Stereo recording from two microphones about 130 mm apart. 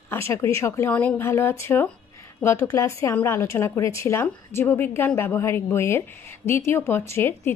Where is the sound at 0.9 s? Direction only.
10° left (ahead or behind).